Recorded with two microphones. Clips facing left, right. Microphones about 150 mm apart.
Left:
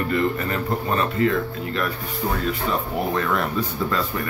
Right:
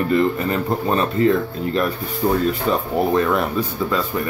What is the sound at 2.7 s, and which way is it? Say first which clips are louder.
Speech: right 5 dB; 30° right (ahead or behind).